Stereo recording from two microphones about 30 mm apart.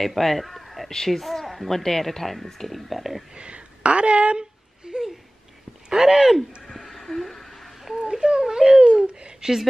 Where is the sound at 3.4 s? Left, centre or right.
Right.